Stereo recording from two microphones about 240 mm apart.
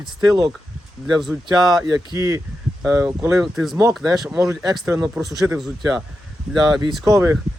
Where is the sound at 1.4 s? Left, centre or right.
Centre.